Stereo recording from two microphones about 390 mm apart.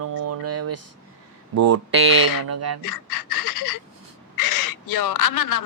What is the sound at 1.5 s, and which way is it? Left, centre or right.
Speech, right.